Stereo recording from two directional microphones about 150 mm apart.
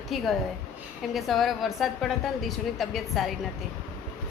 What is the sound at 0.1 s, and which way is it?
A woman's voice, centre (ahead or behind).